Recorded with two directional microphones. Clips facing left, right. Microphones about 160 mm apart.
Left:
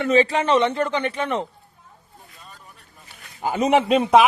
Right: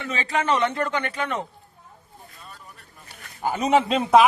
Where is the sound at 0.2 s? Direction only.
30° left (ahead or behind).